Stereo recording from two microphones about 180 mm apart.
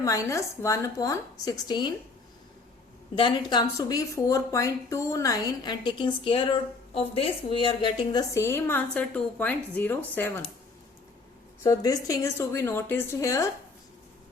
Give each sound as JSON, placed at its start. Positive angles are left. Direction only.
{"t": 0.0, "sound": "speech", "side_deg": 15}
{"t": 3.2, "sound": "speech", "side_deg": 25}
{"t": 11.6, "sound": "speech", "side_deg": 20}